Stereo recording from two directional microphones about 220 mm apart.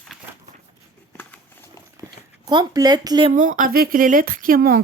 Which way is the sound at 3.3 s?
35° right (ahead or behind).